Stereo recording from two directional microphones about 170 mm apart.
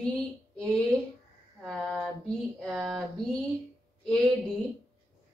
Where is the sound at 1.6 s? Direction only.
5° left (ahead or behind).